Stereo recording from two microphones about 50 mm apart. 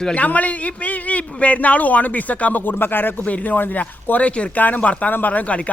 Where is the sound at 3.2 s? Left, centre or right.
Left.